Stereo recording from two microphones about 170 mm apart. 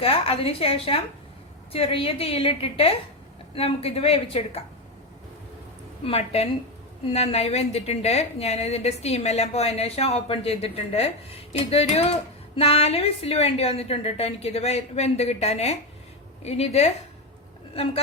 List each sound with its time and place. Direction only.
0.0 s a woman's voice: 35° left (ahead or behind)
6.1 s a woman's voice: 35° left (ahead or behind)